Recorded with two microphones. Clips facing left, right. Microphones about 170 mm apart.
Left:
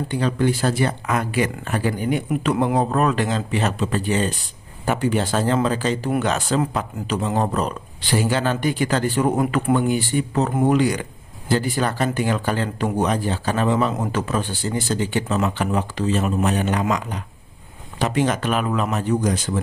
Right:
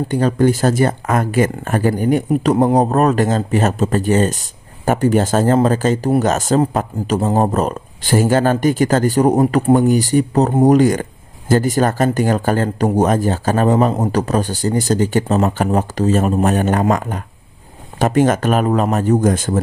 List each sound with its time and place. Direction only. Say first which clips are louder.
0.1 s speech: right 6 dB; 45° right (ahead or behind)